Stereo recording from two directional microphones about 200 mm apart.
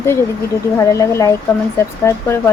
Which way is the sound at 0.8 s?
15° left (ahead or behind).